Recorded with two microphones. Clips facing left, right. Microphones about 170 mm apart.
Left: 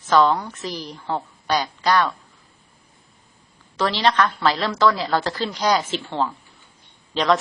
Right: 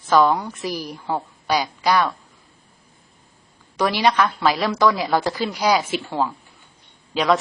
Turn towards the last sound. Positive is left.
turn(degrees=-10)  # may be behind; listen again after turning